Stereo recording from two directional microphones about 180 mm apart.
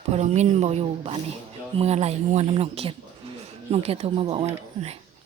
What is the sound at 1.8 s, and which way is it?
Speech, 35° right (ahead or behind).